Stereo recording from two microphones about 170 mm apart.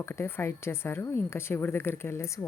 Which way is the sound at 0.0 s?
15° left (ahead or behind).